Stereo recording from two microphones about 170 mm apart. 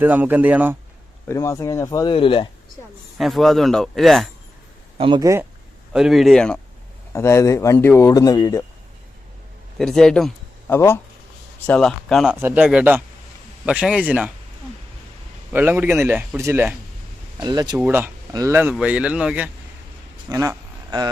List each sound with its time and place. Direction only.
0.0 s speech: 10° right (ahead or behind)
1.3 s speech: 15° left (ahead or behind)
2.1 s speech: 30° left (ahead or behind)
3.2 s speech: centre (ahead or behind)
4.9 s speech: 30° right (ahead or behind)
5.2 s speech: 15° right (ahead or behind)
5.9 s speech: centre (ahead or behind)
7.1 s speech: 15° left (ahead or behind)
9.7 s speech: centre (ahead or behind)
10.7 s speech: 15° left (ahead or behind); by 14.3 s 10° right (ahead or behind)
15.5 s speech: 10° right (ahead or behind)
17.4 s speech: 25° right (ahead or behind)
17.7 s speech: 10° right (ahead or behind)
20.3 s a sound: 20° right (ahead or behind)